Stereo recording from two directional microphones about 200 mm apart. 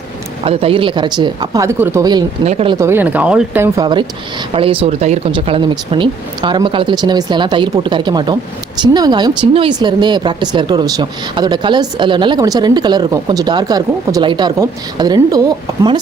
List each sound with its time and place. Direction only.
0.4 s speech: 30° right (ahead or behind)
2.4 s speech: 30° right (ahead or behind)
2.7 s speech: 10° right (ahead or behind)